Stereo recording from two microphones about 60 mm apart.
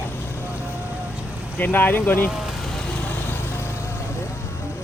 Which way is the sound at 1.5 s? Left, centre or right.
Left.